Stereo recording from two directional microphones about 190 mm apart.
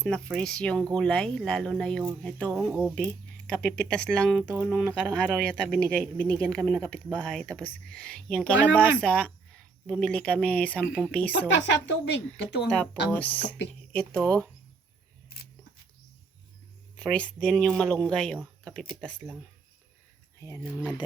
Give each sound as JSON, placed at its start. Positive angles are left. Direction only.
{"t": 0.0, "sound": "speech", "side_deg": 5}
{"t": 4.4, "sound": "speech", "side_deg": -5}
{"t": 11.3, "sound": "speech", "side_deg": 70}
{"t": 13.1, "sound": "speech", "side_deg": 10}
{"t": 17.0, "sound": "speech", "side_deg": 5}